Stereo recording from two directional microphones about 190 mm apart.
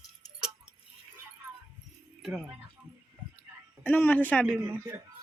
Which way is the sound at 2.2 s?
Centre (ahead or behind).